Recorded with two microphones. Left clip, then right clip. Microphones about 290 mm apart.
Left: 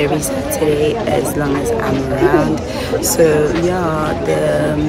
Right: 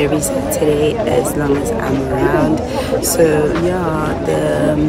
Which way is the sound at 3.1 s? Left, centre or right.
Centre.